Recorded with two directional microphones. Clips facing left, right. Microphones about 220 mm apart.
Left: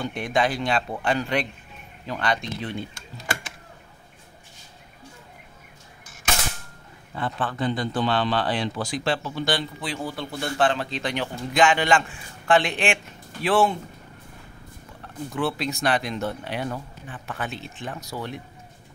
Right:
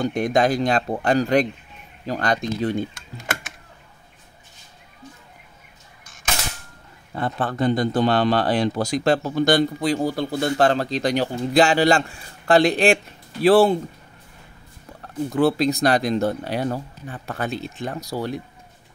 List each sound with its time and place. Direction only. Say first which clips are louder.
0.0 s speech: right 5 dB; 40° right (ahead or behind)
7.2 s speech: right 4 dB; 40° right (ahead or behind)
15.0 s speech: right 8 dB; 40° right (ahead or behind)